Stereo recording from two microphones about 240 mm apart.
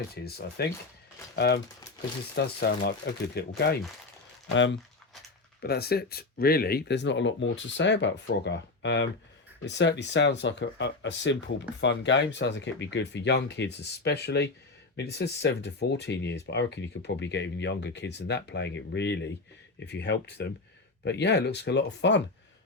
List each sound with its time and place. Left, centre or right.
0.1 s speech: left